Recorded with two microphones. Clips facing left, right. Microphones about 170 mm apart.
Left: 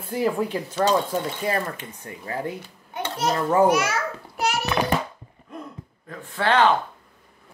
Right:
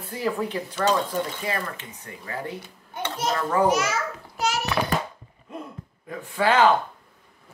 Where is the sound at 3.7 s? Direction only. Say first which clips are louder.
Left 2 dB; 60° left (ahead or behind).